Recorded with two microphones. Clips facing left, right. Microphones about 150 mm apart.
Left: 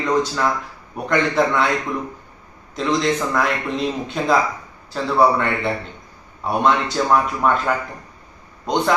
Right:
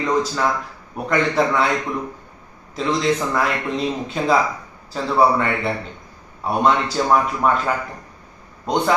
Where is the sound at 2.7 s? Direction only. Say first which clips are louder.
Even; centre (ahead or behind).